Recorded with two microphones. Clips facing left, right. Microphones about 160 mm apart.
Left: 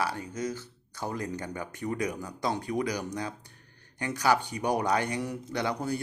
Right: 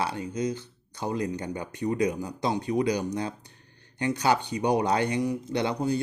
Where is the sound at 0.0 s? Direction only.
20° right (ahead or behind).